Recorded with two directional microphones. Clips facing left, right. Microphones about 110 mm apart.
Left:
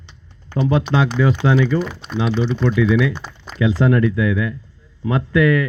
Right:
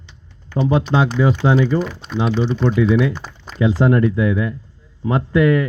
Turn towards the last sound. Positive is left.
turn(degrees=-30)  # may be behind; listen again after turning